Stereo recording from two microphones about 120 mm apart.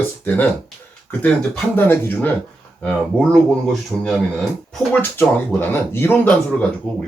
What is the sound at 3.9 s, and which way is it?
Speech, centre (ahead or behind).